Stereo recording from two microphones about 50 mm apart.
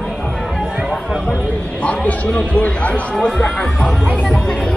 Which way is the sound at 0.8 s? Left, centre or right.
Centre.